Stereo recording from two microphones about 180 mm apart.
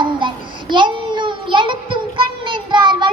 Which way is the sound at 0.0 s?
25° right (ahead or behind).